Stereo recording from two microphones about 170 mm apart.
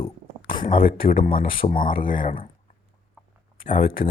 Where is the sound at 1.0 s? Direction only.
60° left (ahead or behind).